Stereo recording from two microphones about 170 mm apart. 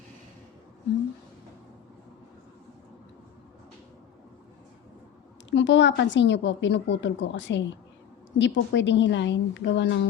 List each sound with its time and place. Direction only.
5.5 s a woman's voice: 90° left